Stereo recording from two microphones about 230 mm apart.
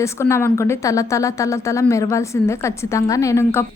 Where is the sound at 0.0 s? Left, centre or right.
Centre.